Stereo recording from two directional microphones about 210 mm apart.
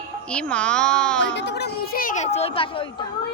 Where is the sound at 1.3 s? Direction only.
55° left (ahead or behind); by 2.8 s 25° left (ahead or behind).